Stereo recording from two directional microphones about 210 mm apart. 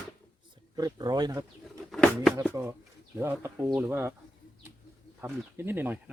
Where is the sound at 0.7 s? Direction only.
20° right (ahead or behind).